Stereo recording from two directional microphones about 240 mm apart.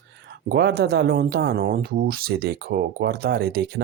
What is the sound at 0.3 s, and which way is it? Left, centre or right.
Speech, right.